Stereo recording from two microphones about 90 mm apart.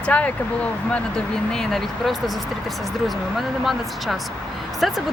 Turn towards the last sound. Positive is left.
turn(degrees=0)  # may be behind; listen again after turning